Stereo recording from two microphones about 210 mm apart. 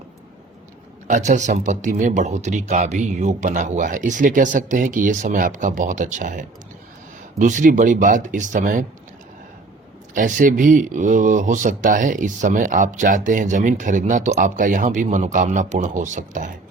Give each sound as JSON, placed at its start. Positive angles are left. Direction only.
{"t": 1.0, "sound": "speech", "side_deg": -35}
{"t": 10.2, "sound": "speech", "side_deg": -40}